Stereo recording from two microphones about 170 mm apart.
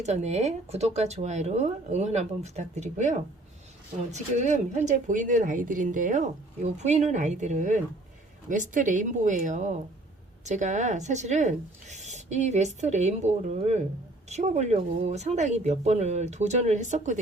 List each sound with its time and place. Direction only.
0.0 s speech: 40° right (ahead or behind)